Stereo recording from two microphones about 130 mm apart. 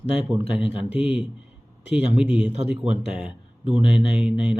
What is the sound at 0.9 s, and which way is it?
Speech, 10° right (ahead or behind).